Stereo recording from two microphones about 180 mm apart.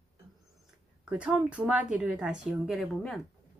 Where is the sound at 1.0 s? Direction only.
5° right (ahead or behind).